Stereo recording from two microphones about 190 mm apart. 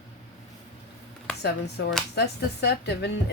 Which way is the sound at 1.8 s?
65° left (ahead or behind).